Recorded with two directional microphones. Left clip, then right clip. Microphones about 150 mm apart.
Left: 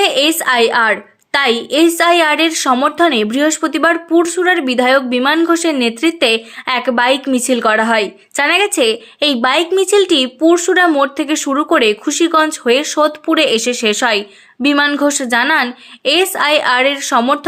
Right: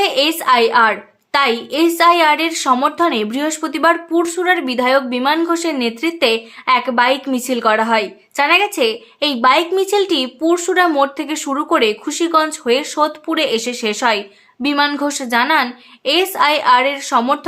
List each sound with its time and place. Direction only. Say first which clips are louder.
0.0 s speech: left 3 dB; 25° left (ahead or behind)